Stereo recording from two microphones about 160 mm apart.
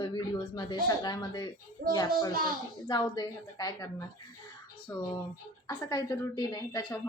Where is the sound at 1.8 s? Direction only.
65° right (ahead or behind).